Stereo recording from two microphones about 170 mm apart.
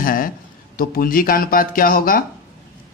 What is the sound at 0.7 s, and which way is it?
Speech, 55° left (ahead or behind).